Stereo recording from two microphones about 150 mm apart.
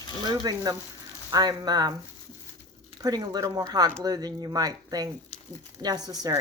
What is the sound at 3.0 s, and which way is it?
Speech, 25° right (ahead or behind).